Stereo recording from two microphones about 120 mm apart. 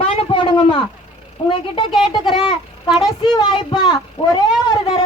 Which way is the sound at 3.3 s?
40° left (ahead or behind).